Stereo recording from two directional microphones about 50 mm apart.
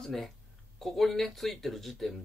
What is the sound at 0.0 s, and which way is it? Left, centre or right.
Speech, centre.